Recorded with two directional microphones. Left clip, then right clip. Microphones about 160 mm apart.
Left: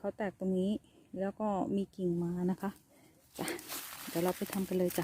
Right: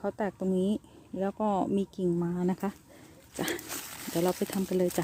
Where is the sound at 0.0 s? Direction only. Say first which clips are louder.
Right 5 dB; centre (ahead or behind).